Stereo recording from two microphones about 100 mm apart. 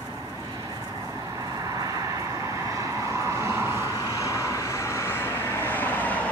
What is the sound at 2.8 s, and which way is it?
Vehicle, 30° right (ahead or behind).